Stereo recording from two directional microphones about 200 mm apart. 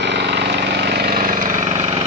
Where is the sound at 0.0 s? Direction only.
60° right (ahead or behind); by 2.0 s 35° right (ahead or behind).